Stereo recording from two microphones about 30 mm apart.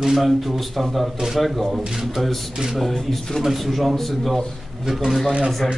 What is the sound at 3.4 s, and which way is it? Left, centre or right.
Speech, centre.